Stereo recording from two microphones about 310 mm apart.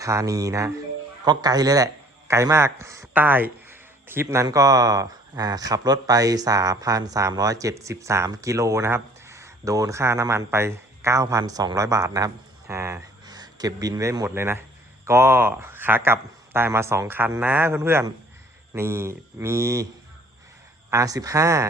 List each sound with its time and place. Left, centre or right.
0.0 s a man's voice: centre
20.9 s a man's voice: centre